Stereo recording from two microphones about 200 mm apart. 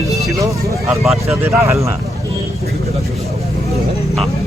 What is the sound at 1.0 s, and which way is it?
Speech, centre (ahead or behind).